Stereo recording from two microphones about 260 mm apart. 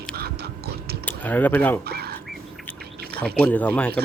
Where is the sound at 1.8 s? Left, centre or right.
Right.